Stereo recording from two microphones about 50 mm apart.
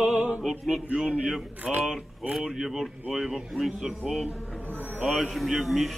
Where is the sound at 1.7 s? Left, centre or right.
Centre.